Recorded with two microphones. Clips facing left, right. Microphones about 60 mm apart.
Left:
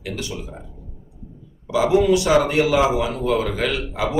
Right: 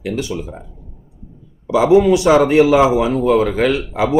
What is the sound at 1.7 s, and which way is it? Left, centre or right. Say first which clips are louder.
A man's voice: right 5 dB; right.